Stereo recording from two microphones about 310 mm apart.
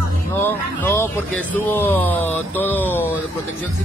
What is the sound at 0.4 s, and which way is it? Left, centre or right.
Speech, centre.